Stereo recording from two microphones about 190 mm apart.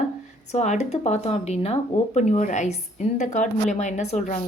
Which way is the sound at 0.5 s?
40° left (ahead or behind).